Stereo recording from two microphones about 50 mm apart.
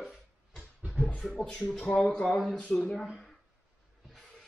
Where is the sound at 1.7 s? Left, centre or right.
Centre.